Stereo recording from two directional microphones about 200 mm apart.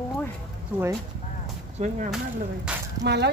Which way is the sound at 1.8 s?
35° right (ahead or behind).